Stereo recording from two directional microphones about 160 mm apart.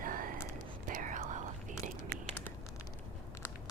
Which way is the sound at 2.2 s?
10° left (ahead or behind).